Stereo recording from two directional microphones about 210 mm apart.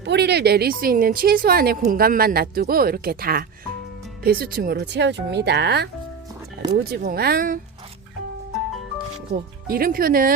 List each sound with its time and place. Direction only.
0.0 s speech: 55° right (ahead or behind)
9.3 s speech: 45° right (ahead or behind)